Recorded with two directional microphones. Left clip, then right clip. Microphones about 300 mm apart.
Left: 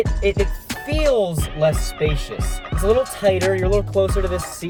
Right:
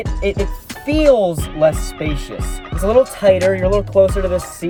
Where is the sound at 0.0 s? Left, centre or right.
Centre.